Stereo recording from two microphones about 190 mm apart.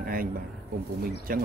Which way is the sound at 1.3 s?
50° right (ahead or behind).